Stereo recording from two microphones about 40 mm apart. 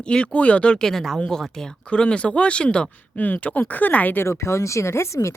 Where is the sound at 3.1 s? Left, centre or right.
Left.